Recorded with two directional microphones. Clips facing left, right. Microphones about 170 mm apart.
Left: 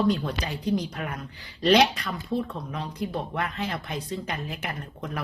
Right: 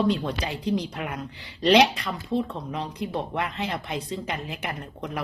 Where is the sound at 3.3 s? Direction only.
25° right (ahead or behind).